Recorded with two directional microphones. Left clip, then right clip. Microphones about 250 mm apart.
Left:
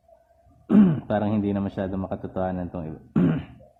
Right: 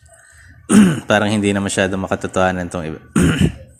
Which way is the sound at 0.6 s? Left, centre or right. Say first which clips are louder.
Right 8 dB; centre.